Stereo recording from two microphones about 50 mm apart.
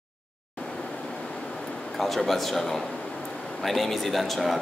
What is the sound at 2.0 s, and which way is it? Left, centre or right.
Speech, centre.